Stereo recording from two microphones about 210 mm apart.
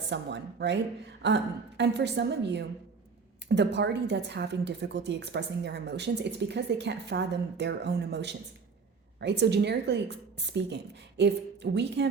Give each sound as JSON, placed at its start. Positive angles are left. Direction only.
{"t": 0.1, "sound": "a woman's voice", "side_deg": -55}